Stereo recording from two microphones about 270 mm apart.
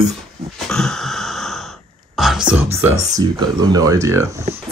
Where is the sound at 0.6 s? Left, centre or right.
Centre.